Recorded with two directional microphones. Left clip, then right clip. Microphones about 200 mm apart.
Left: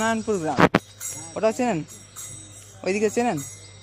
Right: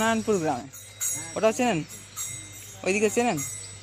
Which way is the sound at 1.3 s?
5° left (ahead or behind).